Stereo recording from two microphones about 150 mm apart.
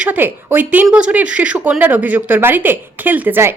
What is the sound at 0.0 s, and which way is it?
Speech, 10° right (ahead or behind).